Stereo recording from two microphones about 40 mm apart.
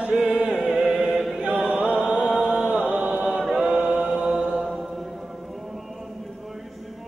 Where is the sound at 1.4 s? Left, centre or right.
Right.